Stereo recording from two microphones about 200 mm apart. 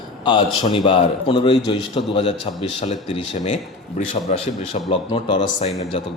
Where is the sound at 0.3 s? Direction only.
25° left (ahead or behind).